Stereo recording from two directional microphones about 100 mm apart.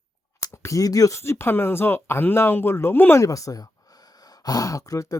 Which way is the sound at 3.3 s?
35° left (ahead or behind).